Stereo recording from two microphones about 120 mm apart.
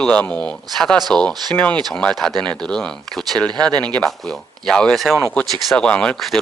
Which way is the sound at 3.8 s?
10° left (ahead or behind).